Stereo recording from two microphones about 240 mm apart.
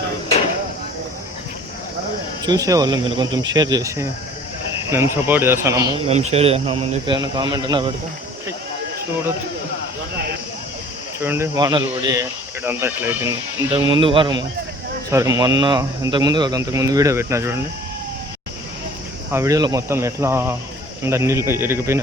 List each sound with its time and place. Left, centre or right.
2.4 s a man's voice: centre
6.1 s a man's voice: right
11.2 s a man's voice: centre
13.7 s a man's voice: right
19.3 s a man's voice: centre